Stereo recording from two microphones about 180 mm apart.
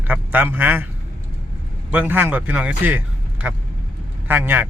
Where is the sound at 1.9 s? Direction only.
10° right (ahead or behind).